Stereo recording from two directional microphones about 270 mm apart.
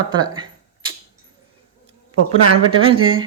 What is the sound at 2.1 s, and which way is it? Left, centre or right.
Speech, right.